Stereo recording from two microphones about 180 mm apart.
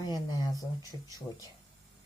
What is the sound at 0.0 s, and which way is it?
Speech, 20° left (ahead or behind).